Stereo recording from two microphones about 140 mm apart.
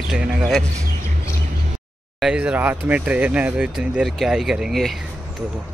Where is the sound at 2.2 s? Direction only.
5° right (ahead or behind).